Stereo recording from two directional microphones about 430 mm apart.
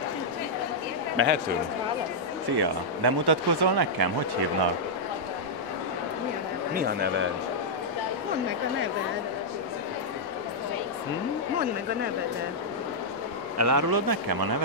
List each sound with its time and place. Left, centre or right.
1.1 s speech: right
2.5 s speech: right
6.7 s speech: right
13.6 s a man's voice: right